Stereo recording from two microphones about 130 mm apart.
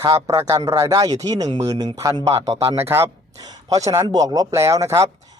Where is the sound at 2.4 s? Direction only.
50° right (ahead or behind).